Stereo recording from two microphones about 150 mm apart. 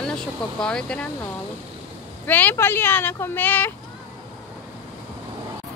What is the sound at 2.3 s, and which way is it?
Speech, 10° left (ahead or behind).